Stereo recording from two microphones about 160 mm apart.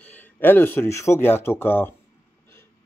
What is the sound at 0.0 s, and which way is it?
Speech, 10° left (ahead or behind).